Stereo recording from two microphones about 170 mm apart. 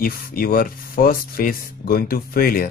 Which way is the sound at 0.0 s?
60° left (ahead or behind).